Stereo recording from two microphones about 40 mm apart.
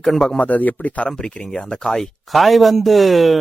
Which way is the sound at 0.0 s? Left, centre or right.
Centre.